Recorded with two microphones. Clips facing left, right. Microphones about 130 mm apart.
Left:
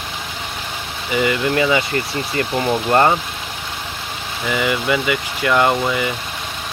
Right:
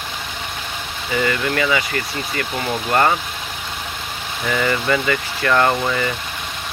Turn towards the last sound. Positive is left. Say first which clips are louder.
# left 1 dB
turn(degrees=10)  # may be behind; listen again after turning